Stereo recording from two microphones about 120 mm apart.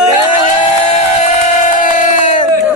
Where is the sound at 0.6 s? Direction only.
60° left (ahead or behind).